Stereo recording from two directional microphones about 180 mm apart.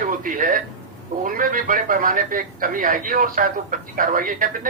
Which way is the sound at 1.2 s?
50° right (ahead or behind).